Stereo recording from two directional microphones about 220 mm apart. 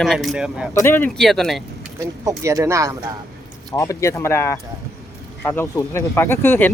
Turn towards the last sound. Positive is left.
turn(degrees=10)  # may be behind; listen again after turning